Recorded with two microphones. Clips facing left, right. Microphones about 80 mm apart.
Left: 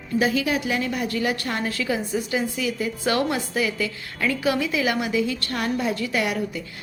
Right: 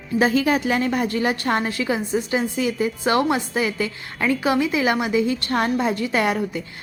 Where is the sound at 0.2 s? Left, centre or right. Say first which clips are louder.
Right 4 dB; right.